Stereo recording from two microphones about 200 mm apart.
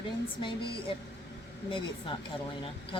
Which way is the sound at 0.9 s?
25° left (ahead or behind).